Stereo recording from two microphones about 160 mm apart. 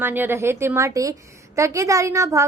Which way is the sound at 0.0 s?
15° right (ahead or behind).